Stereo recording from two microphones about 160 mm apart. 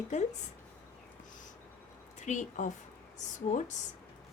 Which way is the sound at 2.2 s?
50° left (ahead or behind).